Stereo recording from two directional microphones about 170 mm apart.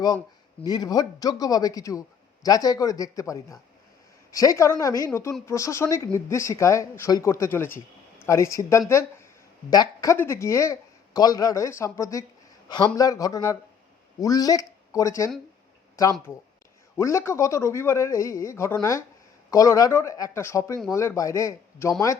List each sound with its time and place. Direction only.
0.6 s a woman's voice: 25° left (ahead or behind)
17.0 s speech: 15° left (ahead or behind)